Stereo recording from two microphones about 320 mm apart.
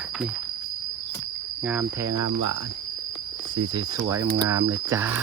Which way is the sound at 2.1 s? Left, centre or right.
Right.